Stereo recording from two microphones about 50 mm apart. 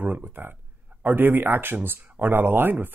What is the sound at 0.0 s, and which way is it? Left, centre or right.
Speech, right.